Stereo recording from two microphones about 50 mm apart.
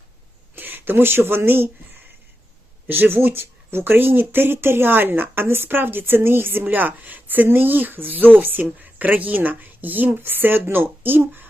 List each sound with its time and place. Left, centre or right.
0.5 s speech: right
2.9 s speech: right